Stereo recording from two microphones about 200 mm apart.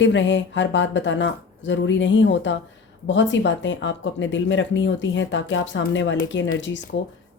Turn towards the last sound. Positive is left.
turn(degrees=65)  # may be behind; listen again after turning